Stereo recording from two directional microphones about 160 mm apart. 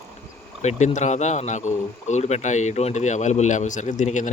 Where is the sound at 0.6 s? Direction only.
45° left (ahead or behind).